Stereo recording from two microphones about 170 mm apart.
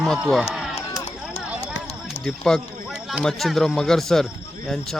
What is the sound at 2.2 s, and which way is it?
Speech, 5° left (ahead or behind).